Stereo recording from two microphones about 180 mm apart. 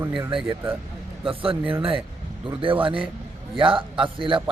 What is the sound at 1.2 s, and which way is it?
A man's voice, 30° right (ahead or behind).